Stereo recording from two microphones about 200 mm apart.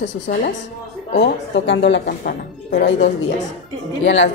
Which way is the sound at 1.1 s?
60° left (ahead or behind).